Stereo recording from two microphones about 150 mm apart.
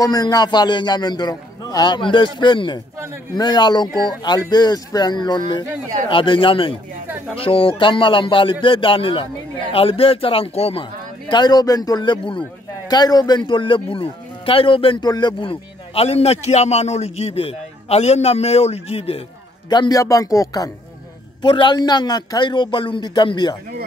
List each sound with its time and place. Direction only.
0.0 s a man's voice: 25° left (ahead or behind); by 19.2 s 40° left (ahead or behind)
19.7 s a man's voice: 25° left (ahead or behind)